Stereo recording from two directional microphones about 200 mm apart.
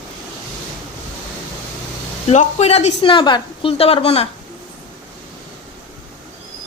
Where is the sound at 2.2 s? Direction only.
30° left (ahead or behind).